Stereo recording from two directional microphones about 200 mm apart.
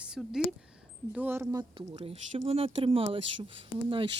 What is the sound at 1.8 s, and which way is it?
Speech, 30° right (ahead or behind).